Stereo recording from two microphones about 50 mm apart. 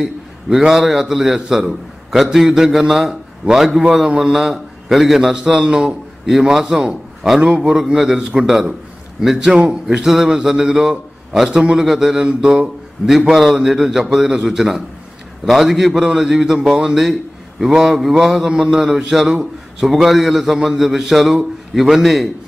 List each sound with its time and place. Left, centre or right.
0.0 s a man's voice: centre
9.6 s speech: right
9.9 s a man's voice: centre